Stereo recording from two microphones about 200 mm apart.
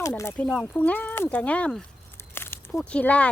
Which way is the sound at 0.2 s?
15° left (ahead or behind).